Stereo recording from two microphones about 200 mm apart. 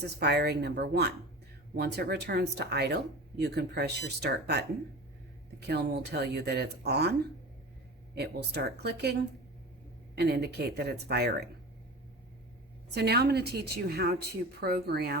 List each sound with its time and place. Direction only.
0.2 s a woman's voice: 55° right (ahead or behind)
10.2 s speech: 55° right (ahead or behind)
12.9 s a woman's voice: 55° right (ahead or behind)